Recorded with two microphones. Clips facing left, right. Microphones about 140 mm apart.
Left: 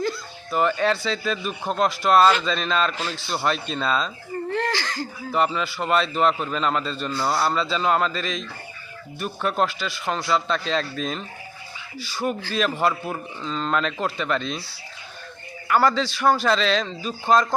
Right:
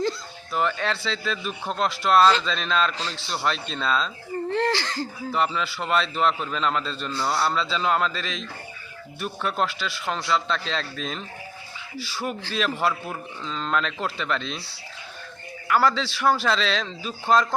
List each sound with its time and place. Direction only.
0.5 s a man's voice: 5° left (ahead or behind)
4.5 s speech: 25° right (ahead or behind)
5.3 s a man's voice: centre (ahead or behind)
15.6 s a man's voice: centre (ahead or behind)